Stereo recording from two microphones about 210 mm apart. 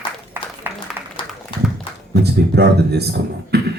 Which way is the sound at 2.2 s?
50° right (ahead or behind).